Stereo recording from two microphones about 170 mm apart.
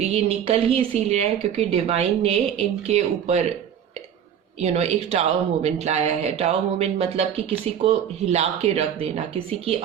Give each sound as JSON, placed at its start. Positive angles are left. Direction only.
{"t": 0.0, "sound": "speech", "side_deg": -35}
{"t": 4.6, "sound": "speech", "side_deg": -40}